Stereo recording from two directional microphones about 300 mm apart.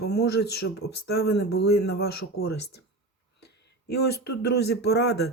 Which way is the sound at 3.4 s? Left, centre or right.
Left.